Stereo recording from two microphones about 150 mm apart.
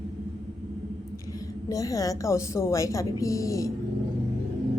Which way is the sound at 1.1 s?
20° left (ahead or behind).